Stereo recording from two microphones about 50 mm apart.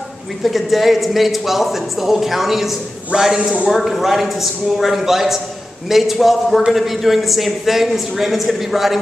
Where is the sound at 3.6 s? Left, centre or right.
Centre.